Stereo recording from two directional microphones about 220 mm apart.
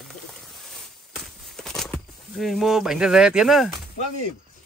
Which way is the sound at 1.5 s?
Centre (ahead or behind).